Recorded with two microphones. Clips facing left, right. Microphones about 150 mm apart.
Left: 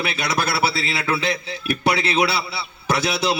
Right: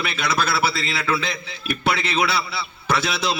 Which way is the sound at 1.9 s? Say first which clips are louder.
Left 2 dB; 15° left (ahead or behind).